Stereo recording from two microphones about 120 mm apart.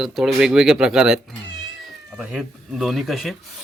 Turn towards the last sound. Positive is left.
turn(degrees=0)  # may be behind; listen again after turning